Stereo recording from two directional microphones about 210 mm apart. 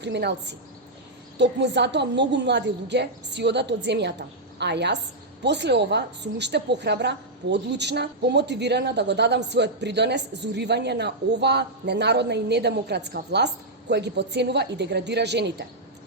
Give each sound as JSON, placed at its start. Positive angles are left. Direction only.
{"t": 0.0, "sound": "a woman's voice", "side_deg": -55}